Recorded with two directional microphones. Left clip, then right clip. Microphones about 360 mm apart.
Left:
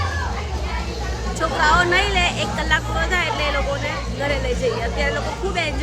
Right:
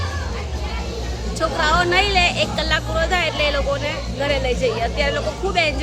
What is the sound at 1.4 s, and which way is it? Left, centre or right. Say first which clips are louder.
Speech: left 1 dB; centre.